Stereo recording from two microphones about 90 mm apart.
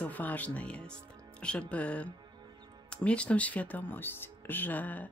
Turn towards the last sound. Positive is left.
turn(degrees=20)  # may be behind; listen again after turning